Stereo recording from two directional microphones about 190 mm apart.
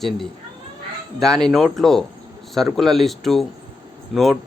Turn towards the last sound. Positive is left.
turn(degrees=0)  # may be behind; listen again after turning